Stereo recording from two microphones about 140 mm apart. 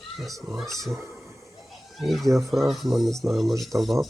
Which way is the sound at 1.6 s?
Centre (ahead or behind).